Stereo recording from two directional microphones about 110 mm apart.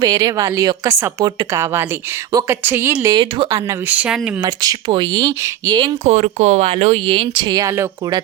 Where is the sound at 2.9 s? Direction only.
35° right (ahead or behind).